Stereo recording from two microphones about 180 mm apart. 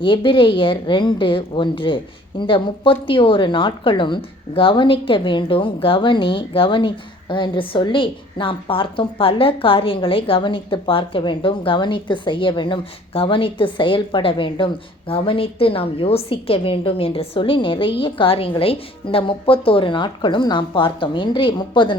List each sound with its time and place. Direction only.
0.0 s a woman's voice: 30° left (ahead or behind)